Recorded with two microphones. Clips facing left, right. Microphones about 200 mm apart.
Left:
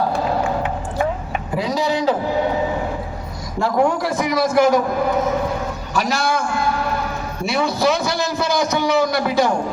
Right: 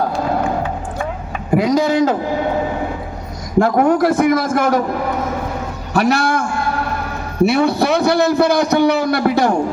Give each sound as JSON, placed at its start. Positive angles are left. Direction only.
{"t": 1.5, "sound": "a man's voice", "side_deg": -50}
{"t": 3.6, "sound": "a man's voice", "side_deg": -55}
{"t": 5.9, "sound": "a man's voice", "side_deg": -60}
{"t": 7.4, "sound": "a man's voice", "side_deg": -60}